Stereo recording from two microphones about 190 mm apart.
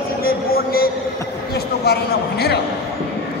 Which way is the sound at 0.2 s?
50° left (ahead or behind).